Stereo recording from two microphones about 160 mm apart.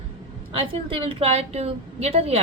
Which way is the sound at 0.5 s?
35° right (ahead or behind).